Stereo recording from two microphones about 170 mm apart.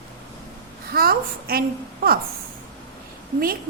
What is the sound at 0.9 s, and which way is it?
Speech, 60° right (ahead or behind).